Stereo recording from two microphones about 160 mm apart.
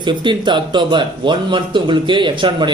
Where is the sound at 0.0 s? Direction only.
30° right (ahead or behind).